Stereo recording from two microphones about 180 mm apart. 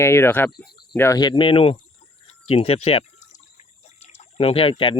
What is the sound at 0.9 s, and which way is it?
Speech, 15° left (ahead or behind).